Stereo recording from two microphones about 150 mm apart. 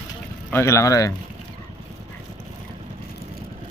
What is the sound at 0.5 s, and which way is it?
Speech, 20° left (ahead or behind).